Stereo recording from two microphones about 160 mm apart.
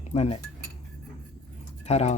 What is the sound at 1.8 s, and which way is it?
Speech, 40° left (ahead or behind).